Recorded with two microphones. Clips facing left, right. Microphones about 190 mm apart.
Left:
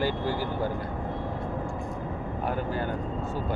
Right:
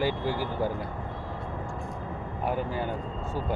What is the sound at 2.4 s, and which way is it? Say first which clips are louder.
Speech: right 1 dB; 10° right (ahead or behind).